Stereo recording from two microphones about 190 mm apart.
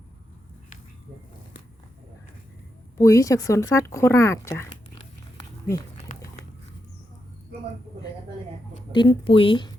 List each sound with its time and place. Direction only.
3.0 s speech: 15° left (ahead or behind)
8.9 s speech: 25° left (ahead or behind)